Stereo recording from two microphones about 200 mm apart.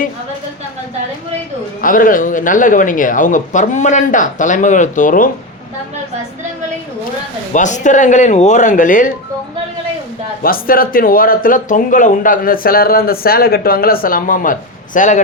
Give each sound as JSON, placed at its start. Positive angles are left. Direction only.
{"t": 1.8, "sound": "speech", "side_deg": 45}
{"t": 7.5, "sound": "speech", "side_deg": 40}
{"t": 10.4, "sound": "speech", "side_deg": 45}